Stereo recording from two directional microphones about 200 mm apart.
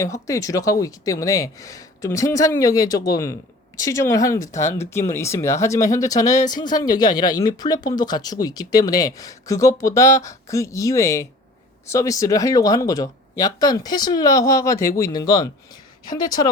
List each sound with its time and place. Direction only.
0.0 s speech: 15° left (ahead or behind)